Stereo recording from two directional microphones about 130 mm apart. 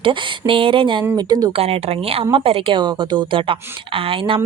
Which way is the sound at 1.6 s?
50° right (ahead or behind).